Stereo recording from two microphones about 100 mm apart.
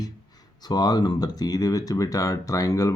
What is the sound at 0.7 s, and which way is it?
Speech, 40° left (ahead or behind).